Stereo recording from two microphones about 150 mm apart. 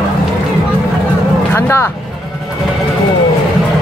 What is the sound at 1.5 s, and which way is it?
Vehicle, 20° left (ahead or behind).